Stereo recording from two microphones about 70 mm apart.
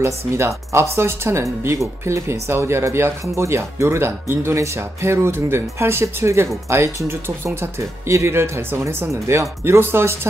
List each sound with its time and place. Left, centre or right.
0.0 s speech: right